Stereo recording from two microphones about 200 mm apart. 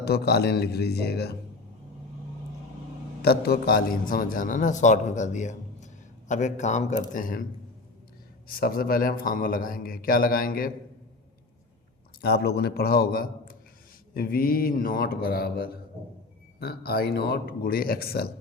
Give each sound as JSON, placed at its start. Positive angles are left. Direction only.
{"t": 0.0, "sound": "speech", "side_deg": 55}
{"t": 3.2, "sound": "a man's voice", "side_deg": 50}
{"t": 8.4, "sound": "speech", "side_deg": 45}
{"t": 12.2, "sound": "speech", "side_deg": 55}